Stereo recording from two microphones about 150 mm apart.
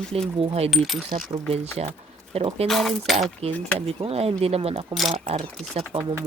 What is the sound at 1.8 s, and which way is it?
Speech, 45° right (ahead or behind).